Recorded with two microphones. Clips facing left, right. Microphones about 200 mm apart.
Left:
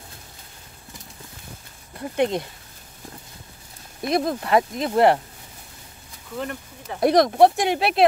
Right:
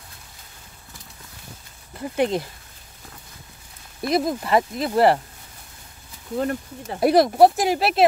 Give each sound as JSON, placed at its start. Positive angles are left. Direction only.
{"t": 2.0, "sound": "speech", "side_deg": -5}
{"t": 4.1, "sound": "speech", "side_deg": -5}
{"t": 6.3, "sound": "speech", "side_deg": -40}
{"t": 7.0, "sound": "speech", "side_deg": -5}